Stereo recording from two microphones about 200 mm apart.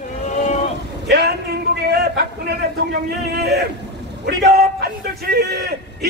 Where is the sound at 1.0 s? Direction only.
55° right (ahead or behind).